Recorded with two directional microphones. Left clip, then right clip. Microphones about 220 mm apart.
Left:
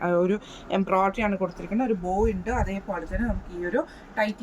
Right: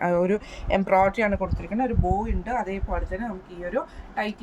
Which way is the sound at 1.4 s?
15° right (ahead or behind).